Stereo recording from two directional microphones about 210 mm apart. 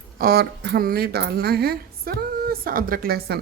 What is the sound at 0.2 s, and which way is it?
Speech, 45° right (ahead or behind).